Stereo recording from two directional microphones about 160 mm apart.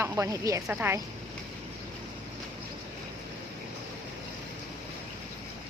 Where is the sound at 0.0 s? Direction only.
20° right (ahead or behind).